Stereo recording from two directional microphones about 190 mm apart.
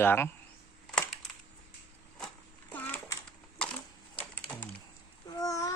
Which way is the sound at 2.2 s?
5° left (ahead or behind).